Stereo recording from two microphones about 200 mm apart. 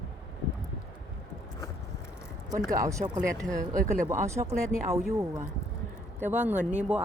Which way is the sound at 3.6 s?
40° right (ahead or behind).